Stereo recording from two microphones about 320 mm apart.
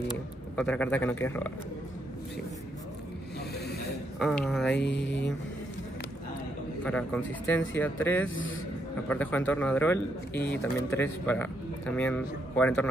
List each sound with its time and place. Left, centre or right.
0.6 s speech: centre
4.2 s speech: centre
4.7 s mantra: left
6.8 s speech: centre
8.3 s mantra: left
9.1 s speech: centre